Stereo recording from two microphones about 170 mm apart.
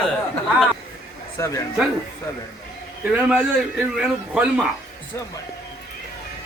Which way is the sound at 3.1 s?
10° right (ahead or behind).